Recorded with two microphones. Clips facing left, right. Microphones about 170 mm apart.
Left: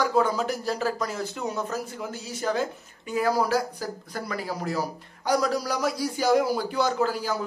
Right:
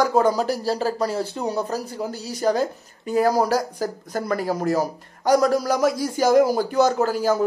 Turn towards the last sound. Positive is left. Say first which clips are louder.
# right 6 dB
turn(degrees=-45)  # may be behind; listen again after turning